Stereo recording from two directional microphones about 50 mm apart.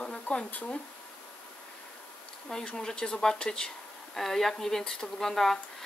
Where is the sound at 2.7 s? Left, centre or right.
Centre.